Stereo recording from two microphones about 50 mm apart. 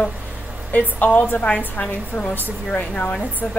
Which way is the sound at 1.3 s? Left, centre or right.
Left.